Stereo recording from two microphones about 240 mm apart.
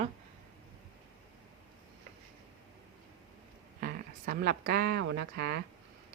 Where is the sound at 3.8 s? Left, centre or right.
Right.